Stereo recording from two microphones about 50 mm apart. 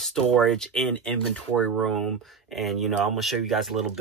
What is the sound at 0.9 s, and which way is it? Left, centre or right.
Speech, left.